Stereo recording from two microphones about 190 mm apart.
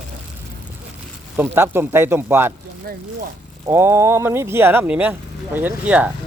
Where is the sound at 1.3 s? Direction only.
10° right (ahead or behind).